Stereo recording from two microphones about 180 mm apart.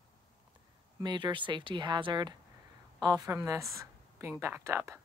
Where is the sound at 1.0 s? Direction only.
25° right (ahead or behind).